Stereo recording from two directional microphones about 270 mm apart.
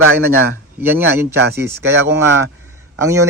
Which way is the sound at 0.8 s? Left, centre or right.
Centre.